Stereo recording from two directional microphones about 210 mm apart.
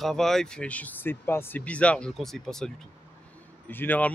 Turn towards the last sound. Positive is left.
turn(degrees=10)  # may be behind; listen again after turning